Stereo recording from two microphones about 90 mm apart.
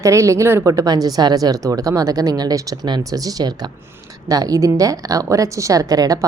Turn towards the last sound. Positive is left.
turn(degrees=-40)  # may be behind; listen again after turning